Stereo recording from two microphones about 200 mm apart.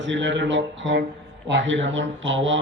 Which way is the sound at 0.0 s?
65° right (ahead or behind).